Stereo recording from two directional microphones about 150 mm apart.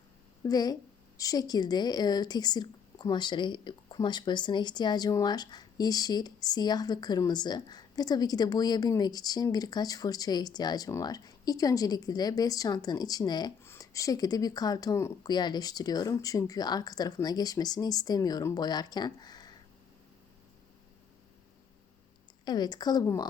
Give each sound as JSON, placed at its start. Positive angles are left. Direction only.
{"t": 0.4, "sound": "speech", "side_deg": 25}
{"t": 22.4, "sound": "speech", "side_deg": 25}